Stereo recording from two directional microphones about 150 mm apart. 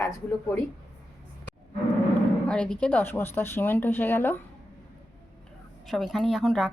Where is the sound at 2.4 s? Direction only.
5° left (ahead or behind).